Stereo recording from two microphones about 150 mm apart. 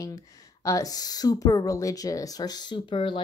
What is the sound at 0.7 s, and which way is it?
Speech, 25° left (ahead or behind).